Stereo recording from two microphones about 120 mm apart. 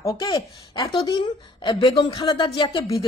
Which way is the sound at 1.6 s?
45° left (ahead or behind).